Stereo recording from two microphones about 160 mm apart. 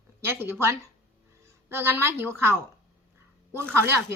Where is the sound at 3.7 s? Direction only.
15° right (ahead or behind).